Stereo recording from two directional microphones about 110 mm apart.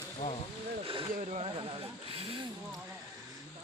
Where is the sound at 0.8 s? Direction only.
55° right (ahead or behind).